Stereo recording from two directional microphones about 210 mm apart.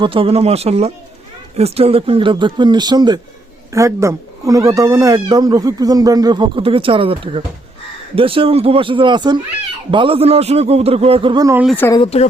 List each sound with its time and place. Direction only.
0.0 s a man's voice: 25° right (ahead or behind)
11.6 s speech: 5° left (ahead or behind)